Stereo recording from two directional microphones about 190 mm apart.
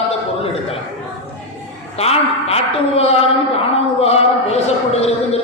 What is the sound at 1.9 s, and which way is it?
A man's voice, 30° left (ahead or behind).